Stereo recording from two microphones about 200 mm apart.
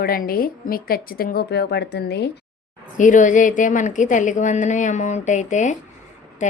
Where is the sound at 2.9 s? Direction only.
40° left (ahead or behind).